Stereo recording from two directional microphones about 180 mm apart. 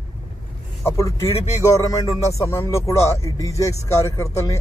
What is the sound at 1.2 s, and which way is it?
Speech, 30° left (ahead or behind).